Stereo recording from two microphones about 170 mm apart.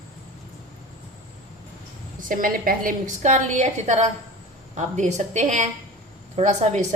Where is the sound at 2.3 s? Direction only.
55° right (ahead or behind).